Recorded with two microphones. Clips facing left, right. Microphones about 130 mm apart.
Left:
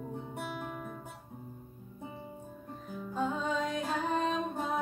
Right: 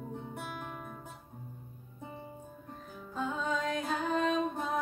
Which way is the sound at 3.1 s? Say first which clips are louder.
Left 1 dB; 5° left (ahead or behind).